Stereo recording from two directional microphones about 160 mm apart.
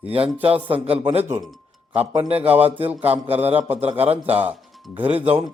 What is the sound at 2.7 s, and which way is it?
A man's voice, 40° right (ahead or behind).